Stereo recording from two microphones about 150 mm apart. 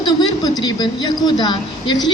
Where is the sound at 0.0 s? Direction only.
30° left (ahead or behind).